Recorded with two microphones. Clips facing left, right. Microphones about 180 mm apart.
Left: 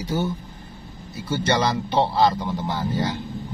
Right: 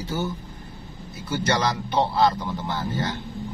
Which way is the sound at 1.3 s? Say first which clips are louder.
Left 2 dB; 25° left (ahead or behind).